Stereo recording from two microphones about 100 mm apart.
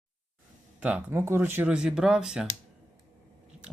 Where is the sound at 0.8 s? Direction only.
15° right (ahead or behind).